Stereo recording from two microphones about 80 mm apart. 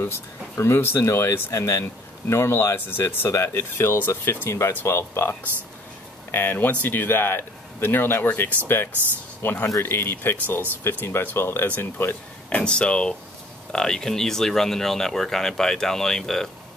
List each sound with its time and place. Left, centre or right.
0.0 s speech: left
12.4 s speech: centre